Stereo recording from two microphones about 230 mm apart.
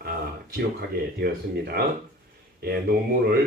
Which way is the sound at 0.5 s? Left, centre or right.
Right.